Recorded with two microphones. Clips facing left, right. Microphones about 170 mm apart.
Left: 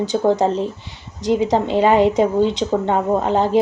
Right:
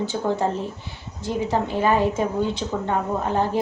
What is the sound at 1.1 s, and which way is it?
Speech, 80° left.